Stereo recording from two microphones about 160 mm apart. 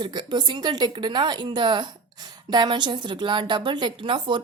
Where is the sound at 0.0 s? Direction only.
25° right (ahead or behind).